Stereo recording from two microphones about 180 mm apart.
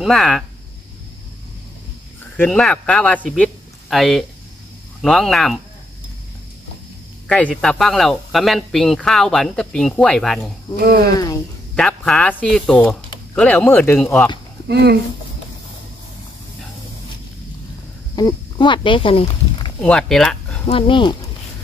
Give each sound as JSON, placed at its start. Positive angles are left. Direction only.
{"t": 0.0, "sound": "speech", "side_deg": 0}
{"t": 2.3, "sound": "speech", "side_deg": 5}
{"t": 7.2, "sound": "speech", "side_deg": 5}
{"t": 10.8, "sound": "speech", "side_deg": -60}
{"t": 11.7, "sound": "speech", "side_deg": 5}
{"t": 14.7, "sound": "speech", "side_deg": -65}
{"t": 18.1, "sound": "speech", "side_deg": 25}
{"t": 19.8, "sound": "speech", "side_deg": 5}
{"t": 20.6, "sound": "speech", "side_deg": 30}